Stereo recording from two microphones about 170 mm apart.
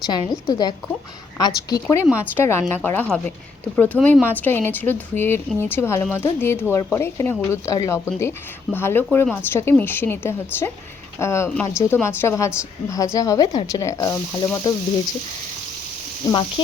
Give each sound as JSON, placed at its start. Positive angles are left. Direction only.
{"t": 0.0, "sound": "speech", "side_deg": 25}
{"t": 2.0, "sound": "speech", "side_deg": -10}
{"t": 2.3, "sound": "speech", "side_deg": 15}
{"t": 16.3, "sound": "speech", "side_deg": 30}